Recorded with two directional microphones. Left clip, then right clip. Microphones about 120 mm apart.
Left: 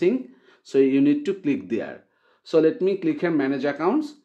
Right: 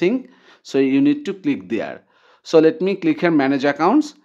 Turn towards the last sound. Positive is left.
turn(degrees=-40)  # may be behind; listen again after turning